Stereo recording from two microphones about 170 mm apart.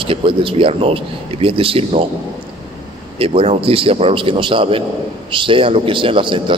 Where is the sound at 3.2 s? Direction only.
35° right (ahead or behind).